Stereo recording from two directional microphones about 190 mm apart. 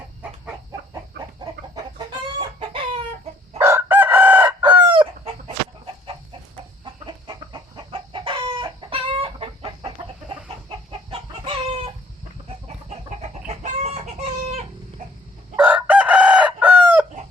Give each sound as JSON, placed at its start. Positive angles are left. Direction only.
{"t": 2.6, "sound": "chicken", "side_deg": -30}
{"t": 3.6, "sound": "chicken", "side_deg": -10}
{"t": 4.6, "sound": "chicken", "side_deg": -25}
{"t": 6.8, "sound": "chicken", "side_deg": -25}
{"t": 13.5, "sound": "chicken", "side_deg": -35}
{"t": 15.5, "sound": "chicken", "side_deg": -10}